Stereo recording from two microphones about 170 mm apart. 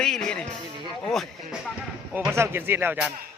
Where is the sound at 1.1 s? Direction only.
Centre (ahead or behind).